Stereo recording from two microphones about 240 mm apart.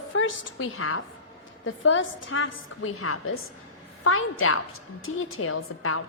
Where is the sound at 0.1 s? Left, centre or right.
Left.